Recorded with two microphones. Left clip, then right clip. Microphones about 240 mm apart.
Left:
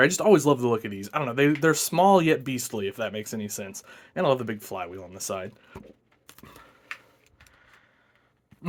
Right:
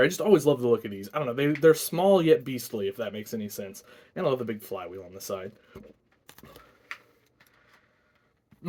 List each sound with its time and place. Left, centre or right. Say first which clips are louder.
0.0 s speech: left 2 dB; left